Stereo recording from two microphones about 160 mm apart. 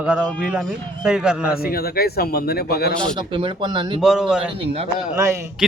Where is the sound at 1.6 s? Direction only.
75° left (ahead or behind).